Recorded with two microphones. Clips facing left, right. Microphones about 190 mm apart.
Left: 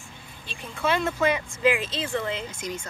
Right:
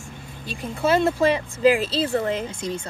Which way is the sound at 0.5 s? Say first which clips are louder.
Right 5 dB; 40° right (ahead or behind).